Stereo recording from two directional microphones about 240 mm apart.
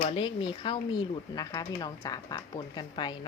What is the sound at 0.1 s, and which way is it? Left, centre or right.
Speech, left.